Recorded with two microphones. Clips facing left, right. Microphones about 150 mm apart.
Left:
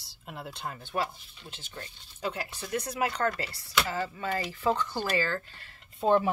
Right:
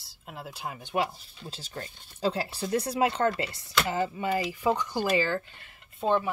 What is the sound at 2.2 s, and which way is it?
Speech, 30° right (ahead or behind).